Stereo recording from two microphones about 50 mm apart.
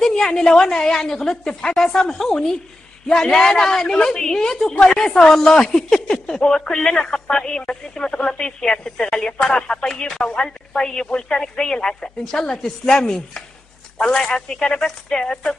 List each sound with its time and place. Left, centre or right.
0.0 s a woman's voice: centre